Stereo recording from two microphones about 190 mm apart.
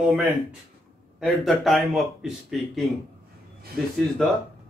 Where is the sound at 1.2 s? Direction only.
Centre (ahead or behind).